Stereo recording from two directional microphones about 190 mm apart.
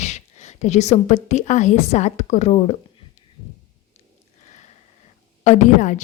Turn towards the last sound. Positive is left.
turn(degrees=40)  # may be behind; listen again after turning